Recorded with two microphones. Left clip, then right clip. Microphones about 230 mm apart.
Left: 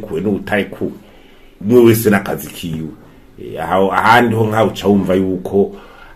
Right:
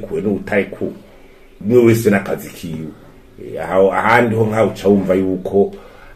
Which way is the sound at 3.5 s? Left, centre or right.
Left.